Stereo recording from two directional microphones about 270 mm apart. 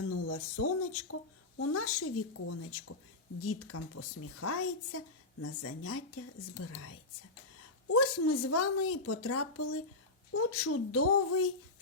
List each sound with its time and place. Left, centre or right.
0.1 s a woman's voice: left
7.9 s a woman's voice: left